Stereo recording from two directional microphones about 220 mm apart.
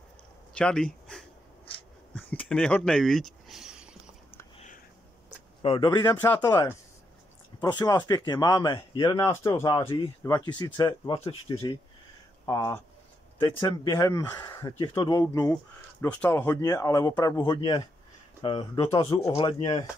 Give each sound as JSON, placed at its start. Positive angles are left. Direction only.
{"t": 0.6, "sound": "speech", "side_deg": 5}
{"t": 2.1, "sound": "a sound", "side_deg": 5}
{"t": 5.6, "sound": "speech", "side_deg": 25}